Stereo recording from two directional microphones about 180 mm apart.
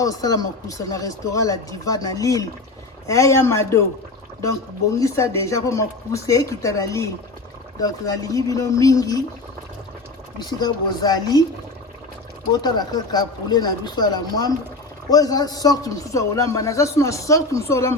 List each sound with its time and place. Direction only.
0.0 s a man's voice: 20° left (ahead or behind)
10.3 s speech: 20° left (ahead or behind)
12.6 s a man's voice: 20° left (ahead or behind)